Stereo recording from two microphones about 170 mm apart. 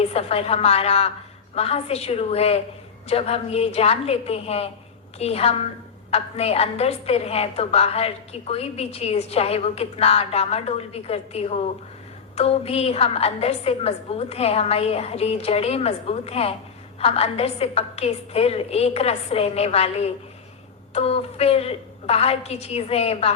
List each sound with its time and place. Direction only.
0.0 s a woman's voice: 35° left (ahead or behind)